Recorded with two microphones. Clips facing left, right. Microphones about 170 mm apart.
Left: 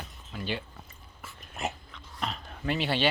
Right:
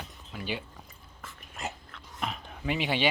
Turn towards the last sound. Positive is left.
turn(degrees=-15)  # may be behind; listen again after turning